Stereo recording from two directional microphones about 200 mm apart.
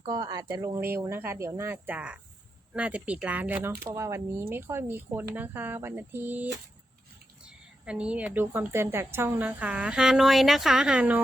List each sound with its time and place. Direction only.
0.0 s a woman's voice: 20° right (ahead or behind)